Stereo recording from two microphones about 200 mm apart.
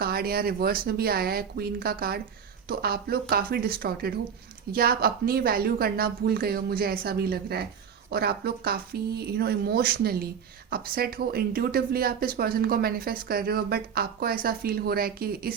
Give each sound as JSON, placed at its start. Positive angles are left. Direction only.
{"t": 0.0, "sound": "speech", "side_deg": -50}